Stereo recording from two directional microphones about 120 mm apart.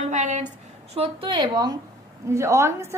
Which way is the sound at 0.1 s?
85° right.